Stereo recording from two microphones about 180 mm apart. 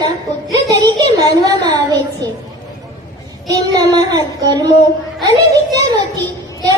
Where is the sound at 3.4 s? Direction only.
20° right (ahead or behind).